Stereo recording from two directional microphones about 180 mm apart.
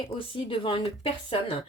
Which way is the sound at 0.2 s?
30° left (ahead or behind).